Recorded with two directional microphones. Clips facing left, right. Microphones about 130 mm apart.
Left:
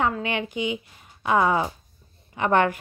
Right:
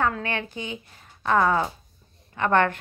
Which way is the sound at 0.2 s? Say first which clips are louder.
Left 4 dB; 15° left (ahead or behind).